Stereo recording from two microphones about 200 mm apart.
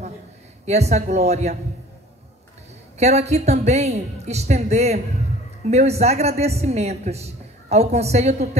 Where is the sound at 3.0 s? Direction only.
35° right (ahead or behind).